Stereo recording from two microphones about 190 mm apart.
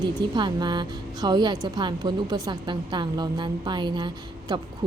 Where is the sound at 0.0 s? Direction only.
25° right (ahead or behind).